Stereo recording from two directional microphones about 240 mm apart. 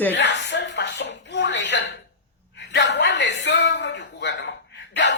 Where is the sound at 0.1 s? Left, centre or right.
Left.